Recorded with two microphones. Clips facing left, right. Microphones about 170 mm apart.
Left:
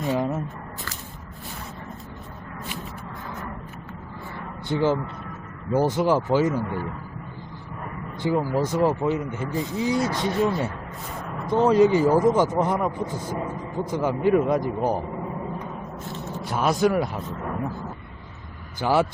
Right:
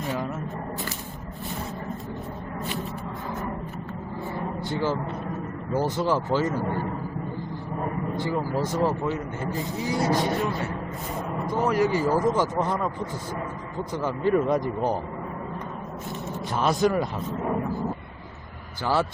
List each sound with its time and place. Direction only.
0.0 s squish: 20° left (ahead or behind)
4.7 s speech: 20° left (ahead or behind)
6.7 s a man's voice: 15° right (ahead or behind)
8.2 s speech: 20° left (ahead or behind)
9.9 s speech: 20° right (ahead or behind)
11.4 s speech: 25° left (ahead or behind)
14.3 s speech: centre (ahead or behind)
16.3 s speech: 10° left (ahead or behind)
18.8 s speech: 15° left (ahead or behind)